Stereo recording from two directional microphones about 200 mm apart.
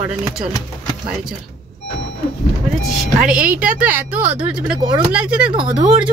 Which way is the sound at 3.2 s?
5° right (ahead or behind).